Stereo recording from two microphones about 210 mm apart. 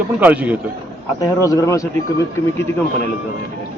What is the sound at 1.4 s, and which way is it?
Speech, 15° left (ahead or behind).